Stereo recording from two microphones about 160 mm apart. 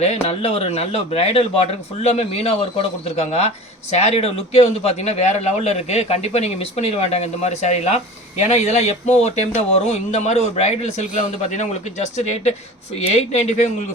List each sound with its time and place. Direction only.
0.0 s a man's voice: 45° left (ahead or behind)